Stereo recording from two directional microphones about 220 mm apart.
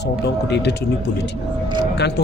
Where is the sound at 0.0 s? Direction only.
50° left (ahead or behind).